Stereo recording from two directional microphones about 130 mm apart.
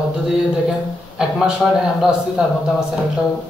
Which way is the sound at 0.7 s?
5° right (ahead or behind).